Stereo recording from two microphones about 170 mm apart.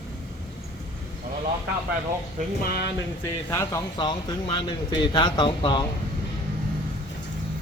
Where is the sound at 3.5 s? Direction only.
20° left (ahead or behind).